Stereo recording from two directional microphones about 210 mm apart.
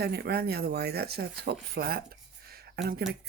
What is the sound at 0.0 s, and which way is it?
Speech, 50° right (ahead or behind).